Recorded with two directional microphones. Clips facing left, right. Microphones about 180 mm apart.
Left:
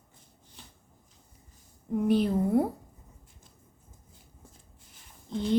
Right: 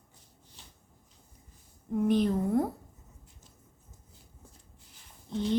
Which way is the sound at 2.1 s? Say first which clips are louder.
Left 2 dB; 10° left (ahead or behind).